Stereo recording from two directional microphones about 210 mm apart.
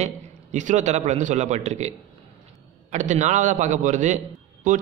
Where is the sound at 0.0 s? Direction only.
35° right (ahead or behind).